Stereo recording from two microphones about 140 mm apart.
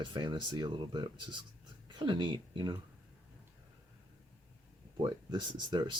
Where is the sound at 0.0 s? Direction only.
35° right (ahead or behind).